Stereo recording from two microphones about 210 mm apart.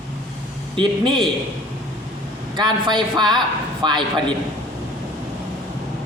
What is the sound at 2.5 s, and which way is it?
A man's voice, 20° right (ahead or behind).